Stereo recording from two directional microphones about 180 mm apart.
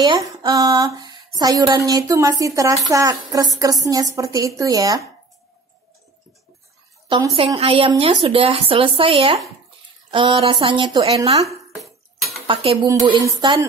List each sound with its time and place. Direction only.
0.0 s speech: 20° right (ahead or behind)
7.1 s a woman's voice: 20° right (ahead or behind)
7.3 s a woman's voice: 30° right (ahead or behind)
12.4 s speech: 30° right (ahead or behind)